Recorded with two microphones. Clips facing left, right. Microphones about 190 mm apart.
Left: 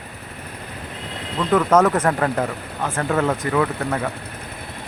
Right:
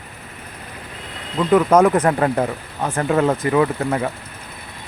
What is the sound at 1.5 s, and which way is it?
Speech, 15° right (ahead or behind).